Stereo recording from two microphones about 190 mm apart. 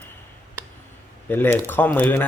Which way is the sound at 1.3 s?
10° left (ahead or behind).